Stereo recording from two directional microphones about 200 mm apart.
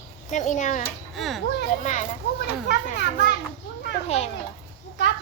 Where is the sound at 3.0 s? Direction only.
60° left (ahead or behind).